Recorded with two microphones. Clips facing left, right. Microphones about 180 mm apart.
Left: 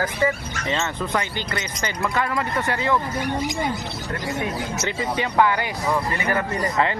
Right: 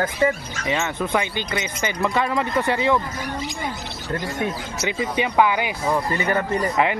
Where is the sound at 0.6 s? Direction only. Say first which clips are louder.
Right 2 dB; 10° right (ahead or behind).